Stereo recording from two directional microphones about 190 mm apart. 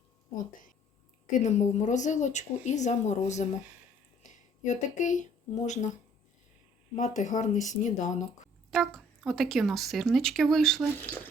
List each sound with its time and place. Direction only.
1.3 s speech: 35° left (ahead or behind)
8.7 s speech: centre (ahead or behind)